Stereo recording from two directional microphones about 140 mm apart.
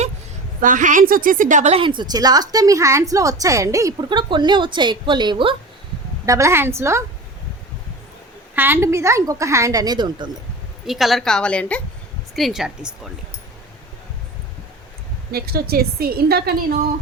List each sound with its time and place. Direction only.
0.6 s a woman's voice: 70° right (ahead or behind)
1.8 s a woman's voice: 35° right (ahead or behind)
6.2 s a woman's voice: 20° right (ahead or behind)
8.5 s a woman's voice: 15° right (ahead or behind); by 10.3 s 30° right (ahead or behind)
10.8 s a woman's voice: centre (ahead or behind)
15.3 s a woman's voice: 90° right